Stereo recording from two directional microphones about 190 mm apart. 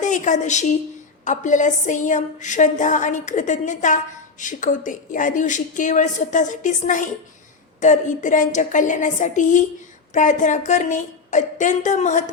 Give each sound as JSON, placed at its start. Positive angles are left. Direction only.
{"t": 0.0, "sound": "a woman's voice", "side_deg": 40}